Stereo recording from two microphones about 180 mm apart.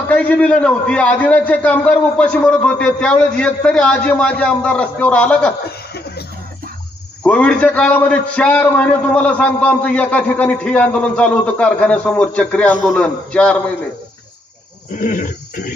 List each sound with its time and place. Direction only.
0.1 s a man's voice: 5° left (ahead or behind)
5.7 s chuckle: 60° left (ahead or behind)
7.2 s a man's voice: 5° left (ahead or behind)
15.0 s wild animals: 45° left (ahead or behind)